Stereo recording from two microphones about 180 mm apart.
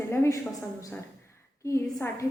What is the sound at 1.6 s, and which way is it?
Speech, 15° left (ahead or behind).